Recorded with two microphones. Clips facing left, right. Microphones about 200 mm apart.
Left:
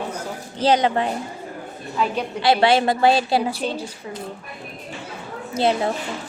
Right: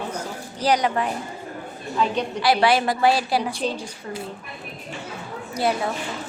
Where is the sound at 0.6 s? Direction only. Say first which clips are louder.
Left 3 dB; 25° left (ahead or behind).